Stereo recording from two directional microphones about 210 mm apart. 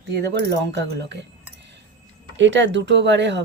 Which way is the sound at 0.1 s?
55° right (ahead or behind).